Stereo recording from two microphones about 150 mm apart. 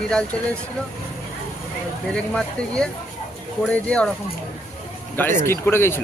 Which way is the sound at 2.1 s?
5° left (ahead or behind).